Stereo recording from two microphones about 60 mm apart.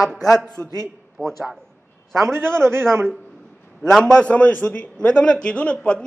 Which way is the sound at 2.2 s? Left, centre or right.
Right.